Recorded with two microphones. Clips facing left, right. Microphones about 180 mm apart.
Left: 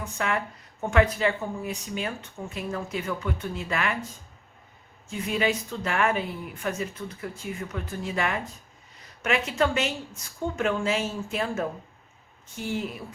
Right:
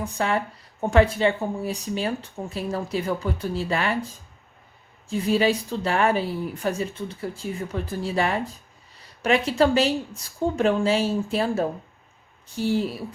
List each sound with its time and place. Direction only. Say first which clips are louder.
0.0 s speech: right 4 dB; 30° right (ahead or behind)
5.0 s speech: right 5 dB; 35° right (ahead or behind)